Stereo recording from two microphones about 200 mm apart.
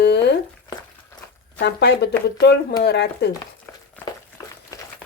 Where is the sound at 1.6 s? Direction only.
55° left (ahead or behind).